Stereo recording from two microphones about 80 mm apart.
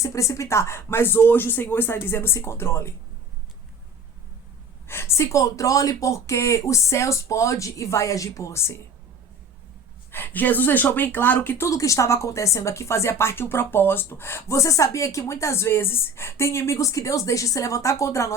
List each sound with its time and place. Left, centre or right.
0.0 s speech: left
4.9 s speech: left
10.1 s speech: left
11.7 s speech: left